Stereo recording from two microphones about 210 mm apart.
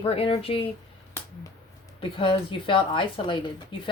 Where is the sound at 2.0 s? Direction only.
25° left (ahead or behind).